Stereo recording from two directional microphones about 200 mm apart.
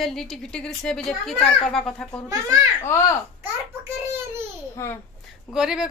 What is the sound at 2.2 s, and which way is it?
Speech, 15° right (ahead or behind).